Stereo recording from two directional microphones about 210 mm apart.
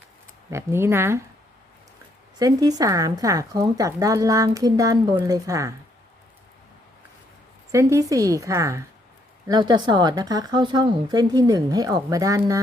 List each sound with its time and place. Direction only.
0.5 s a woman's voice: 10° right (ahead or behind)
2.4 s a woman's voice: 15° right (ahead or behind)
7.7 s a woman's voice: 15° right (ahead or behind)